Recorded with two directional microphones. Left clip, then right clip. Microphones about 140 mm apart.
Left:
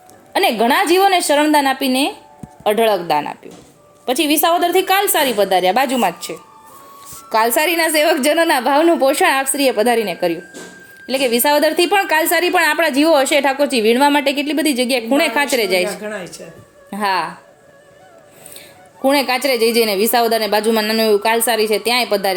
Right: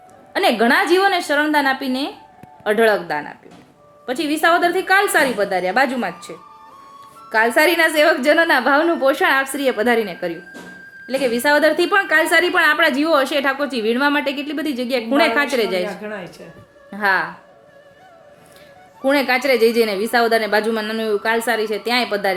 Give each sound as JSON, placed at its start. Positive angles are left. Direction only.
{"t": 0.3, "sound": "a woman's voice", "side_deg": 20}
{"t": 11.0, "sound": "a woman's voice", "side_deg": 30}
{"t": 16.0, "sound": "speech", "side_deg": 10}
{"t": 16.9, "sound": "a woman's voice", "side_deg": 30}
{"t": 19.0, "sound": "a woman's voice", "side_deg": 30}